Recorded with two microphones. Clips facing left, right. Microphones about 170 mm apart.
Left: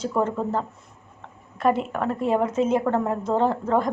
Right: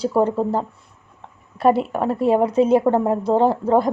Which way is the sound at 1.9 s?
30° right (ahead or behind).